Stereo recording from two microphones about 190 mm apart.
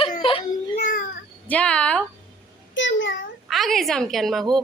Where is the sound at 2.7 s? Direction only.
75° left (ahead or behind).